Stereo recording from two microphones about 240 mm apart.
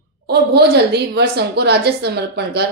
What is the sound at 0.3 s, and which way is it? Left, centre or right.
A woman's voice, right.